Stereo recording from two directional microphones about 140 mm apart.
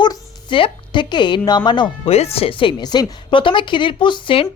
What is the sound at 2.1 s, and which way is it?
A woman's voice, 45° left (ahead or behind).